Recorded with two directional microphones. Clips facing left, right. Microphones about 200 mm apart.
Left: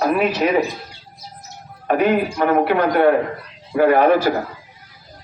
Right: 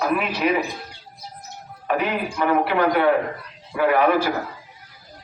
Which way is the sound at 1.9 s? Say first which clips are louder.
Left 6 dB; 50° left (ahead or behind).